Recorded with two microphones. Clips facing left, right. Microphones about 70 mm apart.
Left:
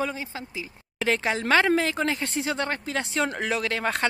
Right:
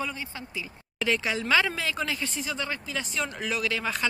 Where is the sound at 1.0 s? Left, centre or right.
Left.